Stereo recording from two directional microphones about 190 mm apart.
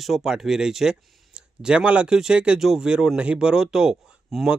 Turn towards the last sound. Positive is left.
turn(degrees=0)  # may be behind; listen again after turning